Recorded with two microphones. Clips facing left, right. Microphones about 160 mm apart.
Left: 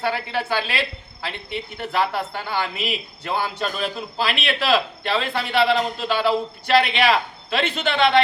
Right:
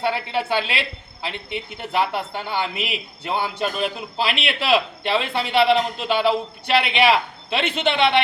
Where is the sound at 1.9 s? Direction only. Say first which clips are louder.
Right 1 dB; 20° right (ahead or behind).